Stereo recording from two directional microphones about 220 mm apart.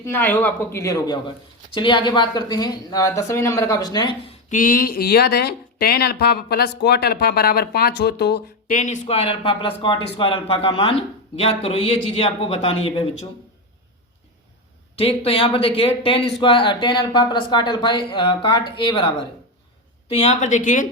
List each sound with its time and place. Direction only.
0.0 s speech: 10° left (ahead or behind)
4.4 s speech: 35° left (ahead or behind)
8.7 s speech: 35° left (ahead or behind)
14.9 s speech: 25° left (ahead or behind)